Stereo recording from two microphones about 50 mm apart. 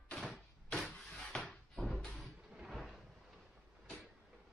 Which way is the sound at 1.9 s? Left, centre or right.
Centre.